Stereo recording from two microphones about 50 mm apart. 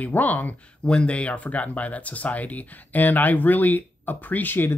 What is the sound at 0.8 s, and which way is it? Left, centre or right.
Speech, left.